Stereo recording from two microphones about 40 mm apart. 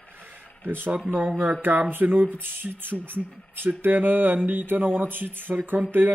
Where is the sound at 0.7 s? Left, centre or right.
Right.